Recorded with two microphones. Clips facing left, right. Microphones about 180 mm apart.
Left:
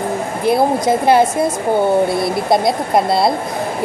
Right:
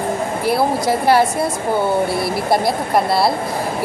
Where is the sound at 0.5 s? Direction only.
20° left (ahead or behind).